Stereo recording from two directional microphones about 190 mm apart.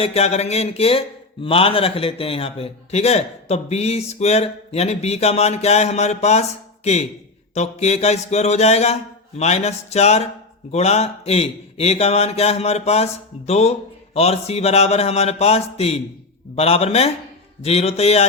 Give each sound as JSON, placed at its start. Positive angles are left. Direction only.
{"t": 0.0, "sound": "speech", "side_deg": 30}